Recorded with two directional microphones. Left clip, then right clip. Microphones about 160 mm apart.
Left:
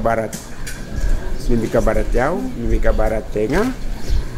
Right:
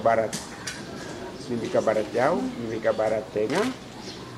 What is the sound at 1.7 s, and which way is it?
A man's voice, 30° left (ahead or behind).